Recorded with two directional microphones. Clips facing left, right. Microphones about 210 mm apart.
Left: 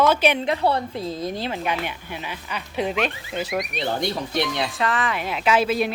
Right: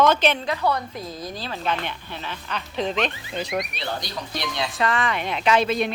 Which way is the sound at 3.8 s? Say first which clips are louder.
Left 6 dB; 30° left (ahead or behind).